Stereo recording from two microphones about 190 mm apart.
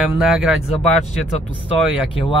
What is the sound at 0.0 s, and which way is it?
Speech, centre (ahead or behind).